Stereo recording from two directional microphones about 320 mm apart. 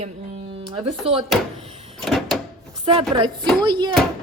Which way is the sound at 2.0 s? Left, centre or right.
Centre.